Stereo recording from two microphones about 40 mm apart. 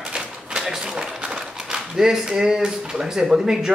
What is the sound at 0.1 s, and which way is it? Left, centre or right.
Speech, centre.